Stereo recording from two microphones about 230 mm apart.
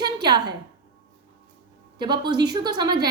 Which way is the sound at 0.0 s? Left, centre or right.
Centre.